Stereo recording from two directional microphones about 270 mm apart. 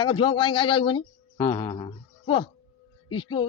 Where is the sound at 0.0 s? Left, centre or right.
Centre.